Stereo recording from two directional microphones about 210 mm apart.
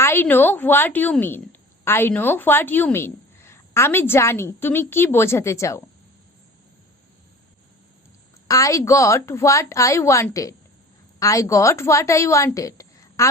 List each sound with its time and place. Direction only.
0.0 s a woman's voice: 10° left (ahead or behind)
8.4 s a woman's voice: 15° left (ahead or behind)